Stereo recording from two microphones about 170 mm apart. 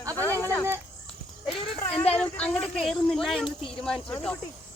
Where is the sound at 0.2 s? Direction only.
15° left (ahead or behind).